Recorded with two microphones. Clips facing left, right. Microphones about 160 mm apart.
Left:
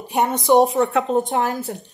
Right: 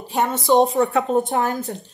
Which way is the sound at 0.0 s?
20° left (ahead or behind).